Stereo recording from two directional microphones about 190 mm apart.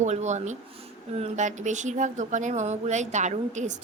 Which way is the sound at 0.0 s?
35° right (ahead or behind).